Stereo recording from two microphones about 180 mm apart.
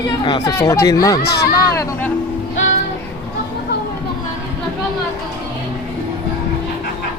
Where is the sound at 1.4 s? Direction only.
15° left (ahead or behind).